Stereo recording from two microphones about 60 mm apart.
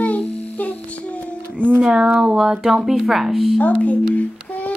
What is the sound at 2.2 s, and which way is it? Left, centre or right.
A woman's voice, centre.